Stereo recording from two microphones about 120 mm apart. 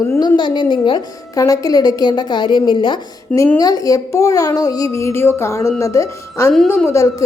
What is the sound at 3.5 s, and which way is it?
A child's voice, 30° left (ahead or behind).